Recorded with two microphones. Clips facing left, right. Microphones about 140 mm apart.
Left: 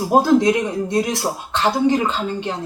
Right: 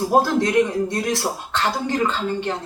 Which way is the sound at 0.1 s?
20° left (ahead or behind).